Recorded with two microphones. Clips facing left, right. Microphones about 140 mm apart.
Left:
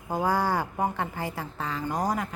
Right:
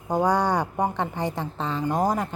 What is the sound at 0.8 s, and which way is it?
A woman's voice, 20° right (ahead or behind).